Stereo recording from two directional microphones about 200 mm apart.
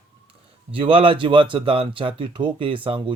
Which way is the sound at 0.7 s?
25° right (ahead or behind).